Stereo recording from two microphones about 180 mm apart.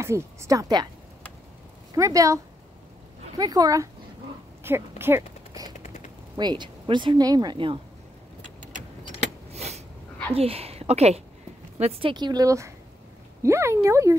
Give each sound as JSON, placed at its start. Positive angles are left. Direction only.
{"t": 0.0, "sound": "speech", "side_deg": -15}
{"t": 2.0, "sound": "speech", "side_deg": -15}
{"t": 4.6, "sound": "a sound", "side_deg": -15}
{"t": 5.8, "sound": "a sound", "side_deg": 40}
{"t": 6.3, "sound": "speech", "side_deg": -25}
{"t": 8.4, "sound": "vehicle", "side_deg": -45}
{"t": 10.3, "sound": "speech", "side_deg": -35}